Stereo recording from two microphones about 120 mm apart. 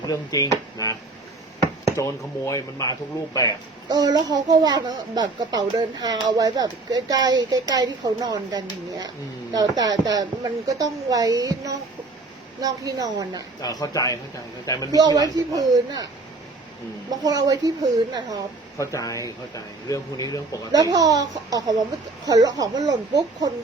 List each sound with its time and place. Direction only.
0.1 s speech: 30° left (ahead or behind)
3.8 s a child's voice: 35° right (ahead or behind)
13.6 s a man's voice: 30° left (ahead or behind)
14.9 s a child's voice: 30° right (ahead or behind)
17.2 s a child's voice: 30° right (ahead or behind)
18.8 s speech: 25° left (ahead or behind)
20.7 s a child's voice: 30° right (ahead or behind)